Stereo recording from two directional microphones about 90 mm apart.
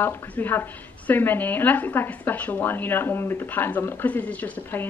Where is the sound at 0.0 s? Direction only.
20° left (ahead or behind).